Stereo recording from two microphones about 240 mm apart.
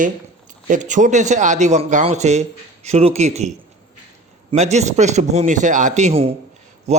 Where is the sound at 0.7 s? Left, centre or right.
Right.